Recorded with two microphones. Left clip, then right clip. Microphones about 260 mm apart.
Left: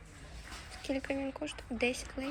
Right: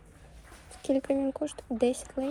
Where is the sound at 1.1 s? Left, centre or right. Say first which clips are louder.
Right 8 dB; right.